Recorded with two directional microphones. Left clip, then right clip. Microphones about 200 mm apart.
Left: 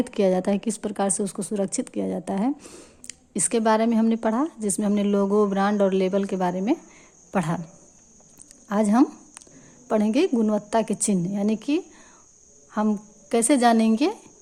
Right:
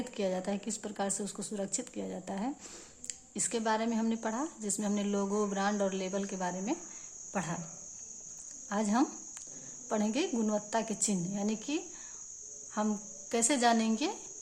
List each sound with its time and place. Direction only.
0.0 s a woman's voice: 35° left (ahead or behind)
8.7 s a woman's voice: 35° left (ahead or behind)